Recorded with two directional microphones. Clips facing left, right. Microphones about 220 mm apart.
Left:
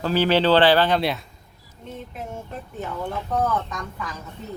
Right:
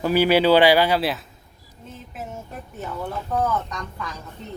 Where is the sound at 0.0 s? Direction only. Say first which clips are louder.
Right 2 dB; 10° right (ahead or behind).